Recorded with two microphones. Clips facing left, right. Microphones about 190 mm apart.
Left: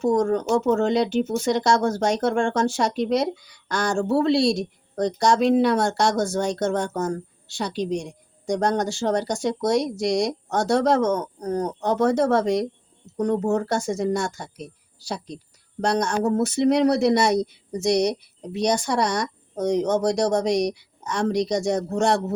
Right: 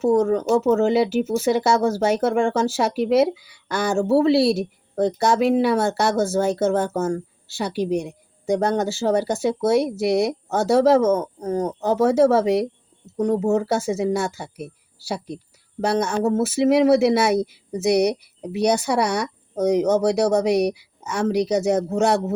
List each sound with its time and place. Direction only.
0.0 s speech: 5° right (ahead or behind)
15.8 s speech: 5° right (ahead or behind)